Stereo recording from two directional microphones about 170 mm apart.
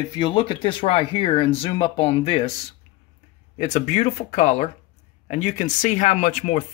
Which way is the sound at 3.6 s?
40° left (ahead or behind).